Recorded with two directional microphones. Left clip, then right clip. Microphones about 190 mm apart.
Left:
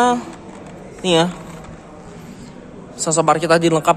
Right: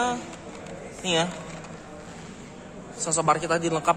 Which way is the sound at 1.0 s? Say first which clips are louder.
Left 9 dB; 30° left (ahead or behind).